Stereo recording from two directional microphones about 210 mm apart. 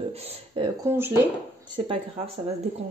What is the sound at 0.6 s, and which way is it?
Speech, 25° right (ahead or behind).